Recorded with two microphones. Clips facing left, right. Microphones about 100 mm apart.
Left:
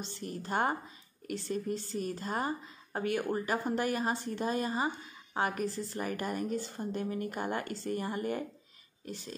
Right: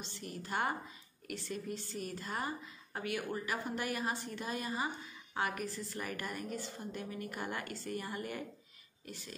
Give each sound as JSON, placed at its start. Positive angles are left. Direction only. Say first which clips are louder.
{"t": 0.0, "sound": "a woman's voice", "louder": "left 5 dB", "side_deg": 35}